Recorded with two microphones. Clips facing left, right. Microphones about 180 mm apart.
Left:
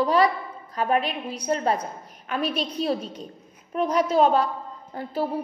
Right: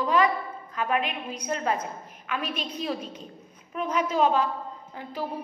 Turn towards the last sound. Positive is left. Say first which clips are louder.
# left 6 dB
turn(degrees=35)  # may be behind; listen again after turning